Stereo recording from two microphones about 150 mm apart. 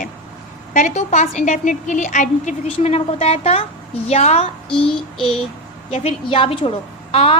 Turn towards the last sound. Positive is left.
turn(degrees=40)  # may be behind; listen again after turning